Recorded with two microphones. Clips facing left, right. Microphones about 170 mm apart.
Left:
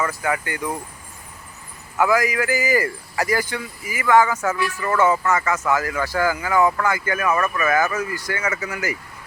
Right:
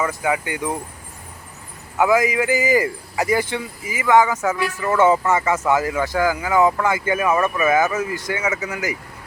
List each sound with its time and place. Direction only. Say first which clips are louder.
0.0 s speech: right 2 dB; 15° right (ahead or behind)
2.0 s speech: right 2 dB; 20° right (ahead or behind)
4.9 s speech: right 3 dB; 25° right (ahead or behind)